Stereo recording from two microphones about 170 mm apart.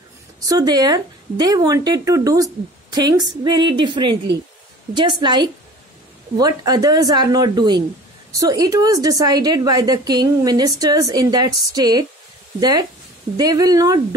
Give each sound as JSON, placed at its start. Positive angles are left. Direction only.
{"t": 0.5, "sound": "speech", "side_deg": -25}